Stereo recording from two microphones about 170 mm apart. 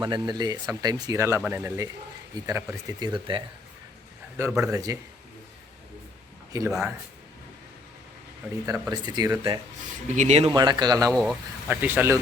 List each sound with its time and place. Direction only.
0.0 s speech: 25° right (ahead or behind)
4.6 s speech: 20° right (ahead or behind)
6.5 s speech: 20° right (ahead or behind)
8.6 s speech: 20° right (ahead or behind)
10.2 s speech: 40° right (ahead or behind)
10.4 s speech: 25° right (ahead or behind)
11.1 s speech: 5° left (ahead or behind)
11.7 s speech: 10° right (ahead or behind)